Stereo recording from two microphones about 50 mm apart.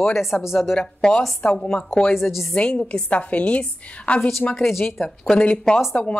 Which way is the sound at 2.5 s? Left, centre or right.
Left.